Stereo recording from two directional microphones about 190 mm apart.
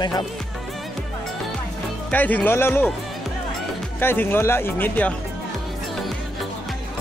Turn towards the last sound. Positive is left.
turn(degrees=10)  # may be behind; listen again after turning